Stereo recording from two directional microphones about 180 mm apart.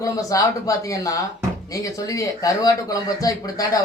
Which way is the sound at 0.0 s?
20° left (ahead or behind).